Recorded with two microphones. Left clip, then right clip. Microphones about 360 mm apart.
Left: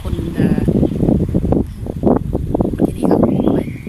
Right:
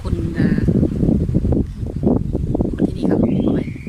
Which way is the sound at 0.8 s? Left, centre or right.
Left.